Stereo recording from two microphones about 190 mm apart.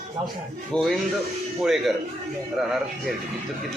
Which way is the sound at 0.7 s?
5° left (ahead or behind).